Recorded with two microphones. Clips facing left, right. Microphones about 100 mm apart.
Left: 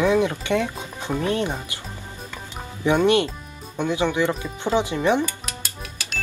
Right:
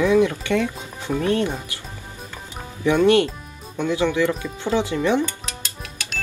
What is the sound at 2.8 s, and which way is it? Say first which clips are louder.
Speech: right 2 dB; 20° left (ahead or behind).